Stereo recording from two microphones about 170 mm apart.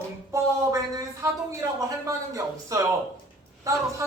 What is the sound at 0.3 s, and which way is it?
A man's voice, 20° right (ahead or behind).